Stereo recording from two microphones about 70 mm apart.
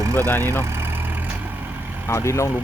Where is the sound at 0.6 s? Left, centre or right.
Right.